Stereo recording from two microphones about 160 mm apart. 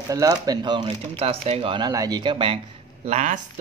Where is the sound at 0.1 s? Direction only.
25° right (ahead or behind).